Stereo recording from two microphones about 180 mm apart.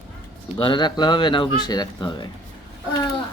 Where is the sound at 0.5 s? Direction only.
25° left (ahead or behind).